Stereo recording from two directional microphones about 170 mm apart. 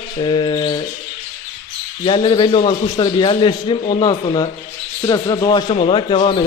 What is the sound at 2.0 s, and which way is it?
Speech, 30° left (ahead or behind).